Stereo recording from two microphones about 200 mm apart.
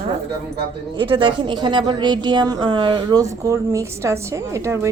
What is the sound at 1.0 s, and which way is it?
A woman's voice, 25° right (ahead or behind).